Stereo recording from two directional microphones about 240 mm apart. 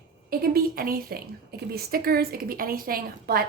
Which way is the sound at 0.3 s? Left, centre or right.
Right.